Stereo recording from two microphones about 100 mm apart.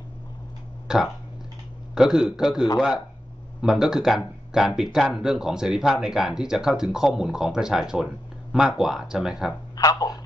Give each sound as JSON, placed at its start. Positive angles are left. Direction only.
{"t": 0.8, "sound": "speech", "side_deg": -5}
{"t": 9.8, "sound": "speech", "side_deg": 40}